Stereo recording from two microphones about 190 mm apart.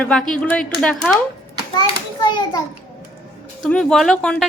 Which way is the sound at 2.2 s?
25° left (ahead or behind).